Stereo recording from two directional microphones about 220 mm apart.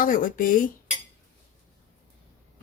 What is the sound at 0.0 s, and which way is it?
Speech, 40° left (ahead or behind).